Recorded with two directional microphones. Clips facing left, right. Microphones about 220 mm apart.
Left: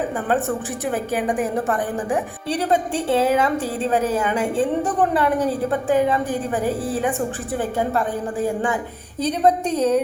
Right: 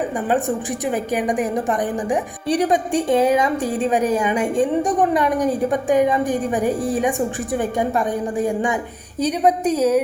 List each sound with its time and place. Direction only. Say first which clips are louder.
0.3 s a woman's voice: right 2 dB; 15° right (ahead or behind)